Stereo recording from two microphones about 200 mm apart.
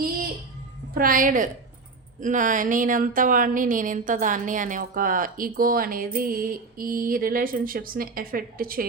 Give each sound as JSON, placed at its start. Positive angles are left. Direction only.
{"t": 0.9, "sound": "speech", "side_deg": -45}